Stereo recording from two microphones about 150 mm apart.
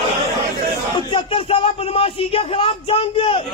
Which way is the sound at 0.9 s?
35° left (ahead or behind).